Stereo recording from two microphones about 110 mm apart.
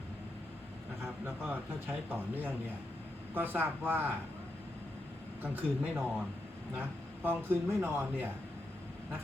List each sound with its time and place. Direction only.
1.2 s a man's voice: 15° right (ahead or behind)
5.8 s a man's voice: 5° right (ahead or behind)
6.7 s a man's voice: 20° right (ahead or behind)